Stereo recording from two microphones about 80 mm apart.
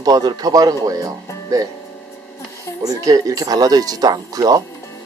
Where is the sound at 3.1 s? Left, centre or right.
Right.